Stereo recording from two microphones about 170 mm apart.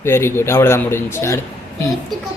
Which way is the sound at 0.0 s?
15° left (ahead or behind).